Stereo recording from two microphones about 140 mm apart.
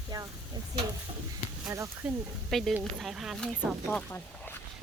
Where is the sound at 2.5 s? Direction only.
5° left (ahead or behind).